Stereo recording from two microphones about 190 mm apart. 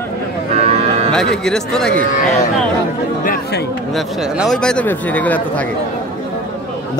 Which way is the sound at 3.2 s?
50° left (ahead or behind).